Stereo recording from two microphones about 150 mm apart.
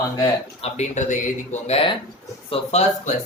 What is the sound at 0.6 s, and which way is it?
Speech, 50° left (ahead or behind).